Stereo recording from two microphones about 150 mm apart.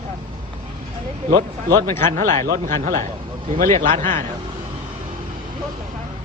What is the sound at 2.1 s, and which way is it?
A man's voice, 60° right (ahead or behind).